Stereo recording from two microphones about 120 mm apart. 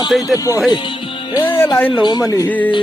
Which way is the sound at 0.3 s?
30° left (ahead or behind).